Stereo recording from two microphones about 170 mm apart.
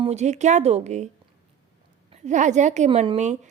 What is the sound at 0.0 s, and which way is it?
Speech, 40° right (ahead or behind).